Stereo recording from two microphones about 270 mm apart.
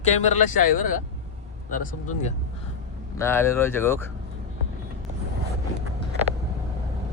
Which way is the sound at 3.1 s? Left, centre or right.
Centre.